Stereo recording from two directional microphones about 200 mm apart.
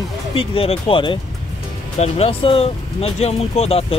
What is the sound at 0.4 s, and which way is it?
Speech, 25° left (ahead or behind).